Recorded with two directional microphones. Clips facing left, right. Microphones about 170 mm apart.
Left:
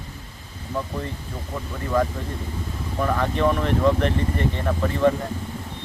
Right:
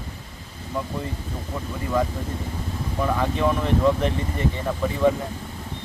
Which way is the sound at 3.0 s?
5° right (ahead or behind).